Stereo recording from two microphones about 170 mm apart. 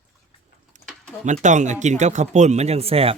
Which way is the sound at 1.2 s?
45° right (ahead or behind).